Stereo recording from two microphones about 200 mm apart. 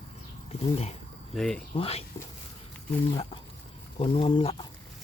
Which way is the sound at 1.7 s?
30° left (ahead or behind).